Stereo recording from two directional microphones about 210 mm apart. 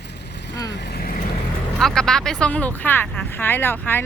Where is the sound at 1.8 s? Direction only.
5° left (ahead or behind).